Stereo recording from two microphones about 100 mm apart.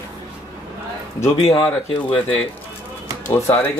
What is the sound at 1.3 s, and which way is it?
Speech, 60° left (ahead or behind).